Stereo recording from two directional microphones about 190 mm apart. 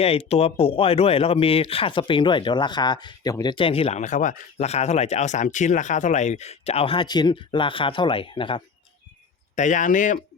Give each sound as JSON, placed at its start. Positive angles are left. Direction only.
{"t": 0.0, "sound": "speech", "side_deg": 30}
{"t": 9.6, "sound": "speech", "side_deg": 40}